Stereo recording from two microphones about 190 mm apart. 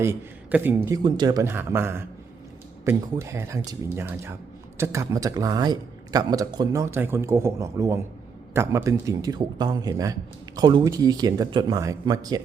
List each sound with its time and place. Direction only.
0.0 s a man's voice: 10° right (ahead or behind)
1.0 s a man's voice: 25° right (ahead or behind)